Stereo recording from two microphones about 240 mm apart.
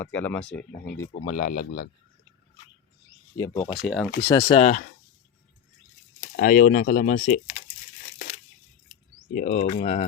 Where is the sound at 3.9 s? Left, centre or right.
Centre.